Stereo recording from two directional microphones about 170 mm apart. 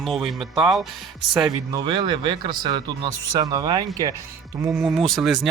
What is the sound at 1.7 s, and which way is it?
Speech, 25° right (ahead or behind).